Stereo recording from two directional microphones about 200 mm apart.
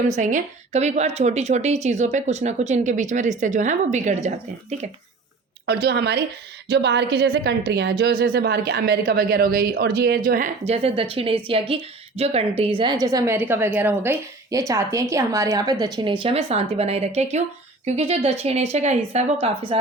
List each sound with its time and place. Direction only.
0.2 s a woman's voice: 40° right (ahead or behind)
5.6 s a woman's voice: 55° right (ahead or behind)
10.2 s a woman's voice: 40° right (ahead or behind)